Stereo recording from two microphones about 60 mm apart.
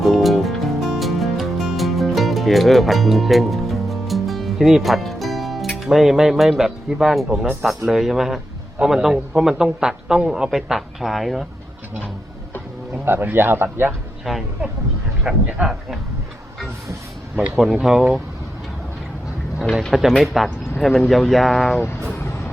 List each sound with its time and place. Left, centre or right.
0.0 s music: centre
7.4 s a man's voice: centre
13.1 s speech: right
14.3 s a man's voice: centre
15.3 s a man's voice: centre
17.7 s a man's voice: centre
19.9 s a man's voice: centre